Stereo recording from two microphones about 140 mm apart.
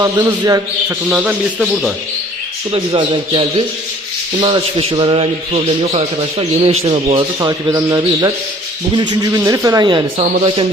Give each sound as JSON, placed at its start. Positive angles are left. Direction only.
{"t": 0.0, "sound": "speech", "side_deg": -25}
{"t": 1.1, "sound": "a man's voice", "side_deg": -10}
{"t": 2.7, "sound": "speech", "side_deg": -40}
{"t": 6.6, "sound": "a man's voice", "side_deg": -50}
{"t": 7.3, "sound": "speech", "side_deg": -30}